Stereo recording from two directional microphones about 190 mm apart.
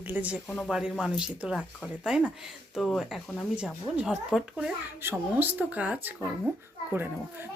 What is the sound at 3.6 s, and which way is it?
Speech, 5° right (ahead or behind).